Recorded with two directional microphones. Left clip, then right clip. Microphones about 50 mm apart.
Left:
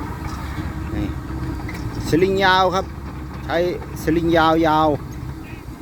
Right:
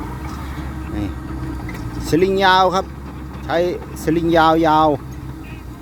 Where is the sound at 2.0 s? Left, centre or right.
Right.